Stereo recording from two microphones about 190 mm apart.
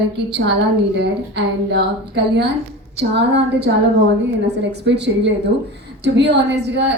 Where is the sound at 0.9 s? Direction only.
65° right (ahead or behind).